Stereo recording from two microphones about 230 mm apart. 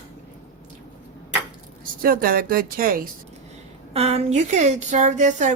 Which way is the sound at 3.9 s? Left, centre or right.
Right.